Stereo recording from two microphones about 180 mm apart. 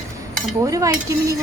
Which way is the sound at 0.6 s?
20° right (ahead or behind).